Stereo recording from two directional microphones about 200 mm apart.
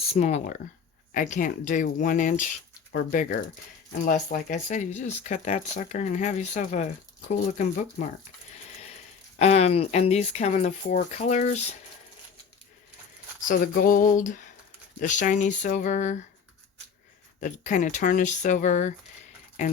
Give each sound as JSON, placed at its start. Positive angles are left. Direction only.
{"t": 0.1, "sound": "speech", "side_deg": 35}
{"t": 9.4, "sound": "speech", "side_deg": 35}
{"t": 13.5, "sound": "speech", "side_deg": 45}
{"t": 17.4, "sound": "speech", "side_deg": 40}